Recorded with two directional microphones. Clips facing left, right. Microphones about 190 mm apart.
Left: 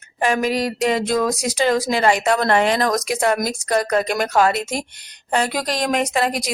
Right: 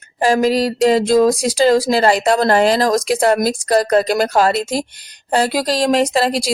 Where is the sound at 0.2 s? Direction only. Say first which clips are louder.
Right 5 dB; 35° right (ahead or behind).